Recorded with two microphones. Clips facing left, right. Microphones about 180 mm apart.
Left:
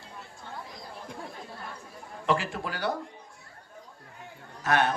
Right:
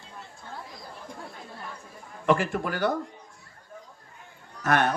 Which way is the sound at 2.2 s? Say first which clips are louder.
Right 4 dB; 50° right (ahead or behind).